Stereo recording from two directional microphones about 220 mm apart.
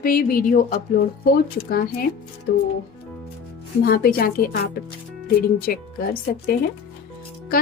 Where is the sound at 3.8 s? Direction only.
40° left (ahead or behind).